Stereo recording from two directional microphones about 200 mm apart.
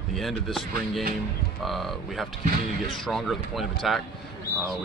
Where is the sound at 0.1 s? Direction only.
Centre (ahead or behind).